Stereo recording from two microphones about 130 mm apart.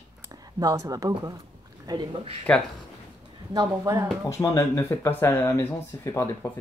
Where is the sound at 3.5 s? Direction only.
25° right (ahead or behind).